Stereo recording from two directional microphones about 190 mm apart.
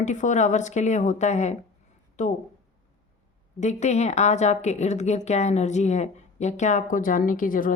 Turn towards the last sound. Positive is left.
turn(degrees=45)  # may be behind; listen again after turning